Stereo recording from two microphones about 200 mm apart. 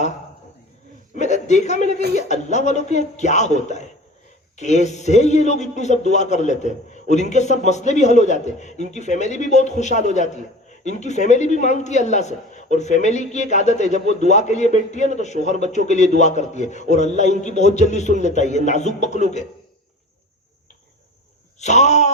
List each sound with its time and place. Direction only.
1.1 s a sound: 35° left (ahead or behind)
2.1 s a man's voice: 35° left (ahead or behind)
21.6 s a man's voice: 35° left (ahead or behind)